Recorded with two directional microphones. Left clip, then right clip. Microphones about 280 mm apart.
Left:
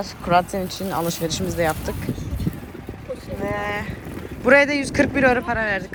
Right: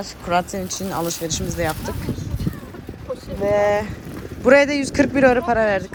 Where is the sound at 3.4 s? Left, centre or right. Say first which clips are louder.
Right 9 dB; centre.